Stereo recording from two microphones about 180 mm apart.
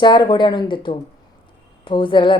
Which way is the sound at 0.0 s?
25° left (ahead or behind).